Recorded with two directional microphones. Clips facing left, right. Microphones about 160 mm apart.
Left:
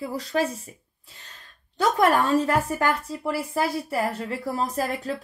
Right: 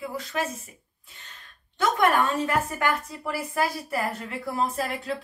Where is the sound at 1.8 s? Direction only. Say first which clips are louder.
Left 2 dB; 35° left (ahead or behind).